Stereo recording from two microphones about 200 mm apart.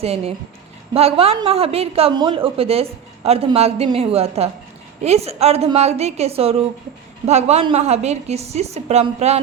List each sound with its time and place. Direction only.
0.0 s a woman's voice: 30° right (ahead or behind)